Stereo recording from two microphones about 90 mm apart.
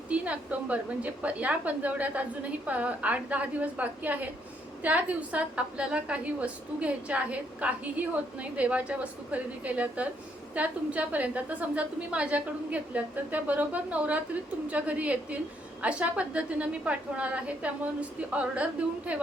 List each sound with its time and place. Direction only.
0.1 s a woman's voice: 15° right (ahead or behind)